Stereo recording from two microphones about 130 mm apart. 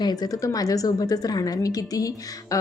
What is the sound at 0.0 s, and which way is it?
A woman's voice, 25° left (ahead or behind).